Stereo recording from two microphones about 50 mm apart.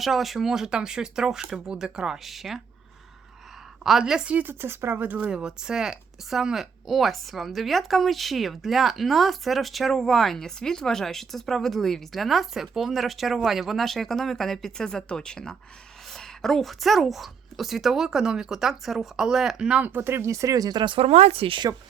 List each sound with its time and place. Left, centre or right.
0.0 s speech: centre
3.8 s speech: centre
4.3 s speech: right
4.6 s speech: right
5.0 s speech: right
5.3 s speech: centre
19.8 s speech: right
20.2 s speech: right